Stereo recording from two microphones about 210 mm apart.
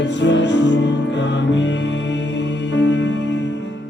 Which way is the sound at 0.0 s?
60° left (ahead or behind).